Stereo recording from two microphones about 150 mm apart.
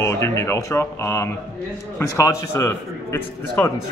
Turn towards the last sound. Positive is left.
turn(degrees=15)  # may be behind; listen again after turning